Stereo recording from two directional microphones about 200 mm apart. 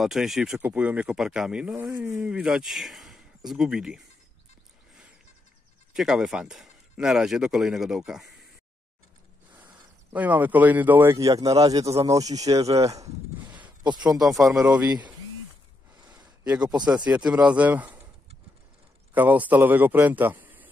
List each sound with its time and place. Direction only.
0.0 s speech: centre (ahead or behind)
1.9 s speech: 15° right (ahead or behind)
5.9 s speech: centre (ahead or behind)
10.1 s speech: 10° right (ahead or behind)
12.8 s a sound: 15° right (ahead or behind)
13.8 s speech: 20° right (ahead or behind)
14.2 s speech: centre (ahead or behind)
16.6 s speech: 20° right (ahead or behind)
17.1 s speech: 5° right (ahead or behind)
19.1 s a man's voice: 10° right (ahead or behind)